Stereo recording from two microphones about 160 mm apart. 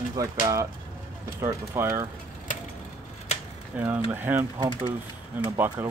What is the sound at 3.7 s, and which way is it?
Speech, 10° right (ahead or behind).